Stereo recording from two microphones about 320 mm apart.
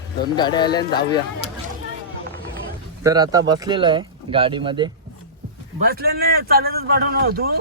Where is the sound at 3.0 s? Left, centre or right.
Centre.